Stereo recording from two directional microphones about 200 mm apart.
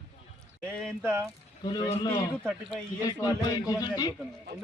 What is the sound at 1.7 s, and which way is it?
Speech, 20° left (ahead or behind).